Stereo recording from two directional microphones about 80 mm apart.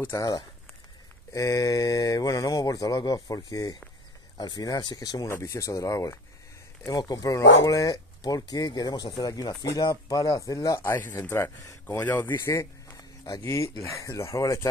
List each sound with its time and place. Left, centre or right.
0.0 s speech: left
1.3 s speech: left
5.3 s speech: left
6.9 s speech: left
10.8 s speech: left
12.4 s speech: left